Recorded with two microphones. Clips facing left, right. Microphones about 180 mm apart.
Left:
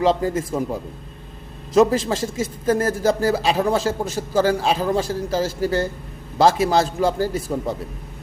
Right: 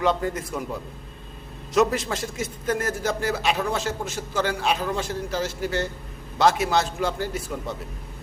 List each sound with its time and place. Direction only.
0.2 s a man's voice: 30° left (ahead or behind)
1.7 s a man's voice: 30° left (ahead or behind)